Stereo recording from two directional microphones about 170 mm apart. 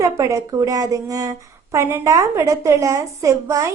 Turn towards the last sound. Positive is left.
turn(degrees=-20)  # may be behind; listen again after turning